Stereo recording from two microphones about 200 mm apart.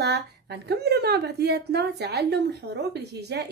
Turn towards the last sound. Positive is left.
turn(degrees=-55)  # may be behind; listen again after turning